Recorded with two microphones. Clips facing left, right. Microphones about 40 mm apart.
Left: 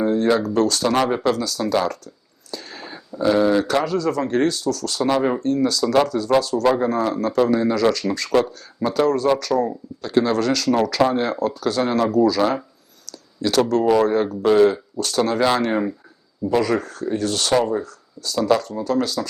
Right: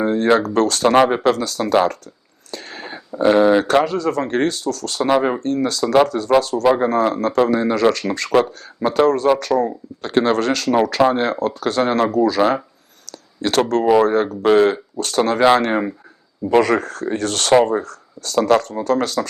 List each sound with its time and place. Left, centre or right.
0.0 s speech: right
2.5 s a sound: right
3.1 s speech: right
5.0 s speech: right
5.4 s speech: right
5.8 s speech: right
6.1 s speech: right
12.4 s speech: right
13.1 s a sound: right
13.8 s speech: centre
14.1 s speech: right
15.4 s speech: right
16.5 s speech: right